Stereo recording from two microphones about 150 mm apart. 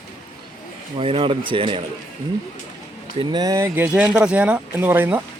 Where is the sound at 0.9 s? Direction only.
35° right (ahead or behind).